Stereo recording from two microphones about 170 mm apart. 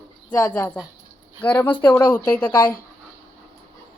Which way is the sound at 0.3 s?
10° left (ahead or behind).